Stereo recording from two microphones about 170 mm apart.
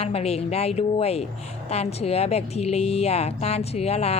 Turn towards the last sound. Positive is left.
turn(degrees=40)  # may be behind; listen again after turning